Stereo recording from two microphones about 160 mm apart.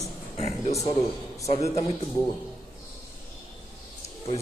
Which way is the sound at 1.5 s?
40° left (ahead or behind).